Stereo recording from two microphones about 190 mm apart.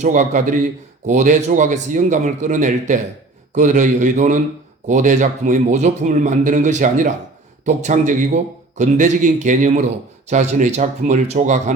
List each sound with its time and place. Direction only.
0.0 s a man's voice: 40° right (ahead or behind)